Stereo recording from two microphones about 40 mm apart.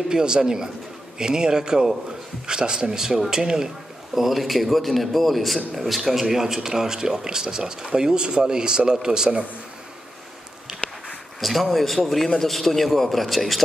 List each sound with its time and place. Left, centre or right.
0.1 s speech: centre
4.1 s a man's voice: centre
10.8 s a sound: left
11.3 s a man's voice: centre